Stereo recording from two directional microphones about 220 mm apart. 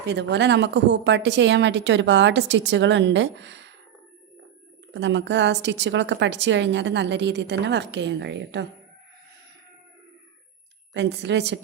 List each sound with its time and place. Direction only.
0.0 s a woman's voice: 50° right (ahead or behind)
4.9 s a woman's voice: 55° right (ahead or behind)
10.9 s a woman's voice: 50° right (ahead or behind)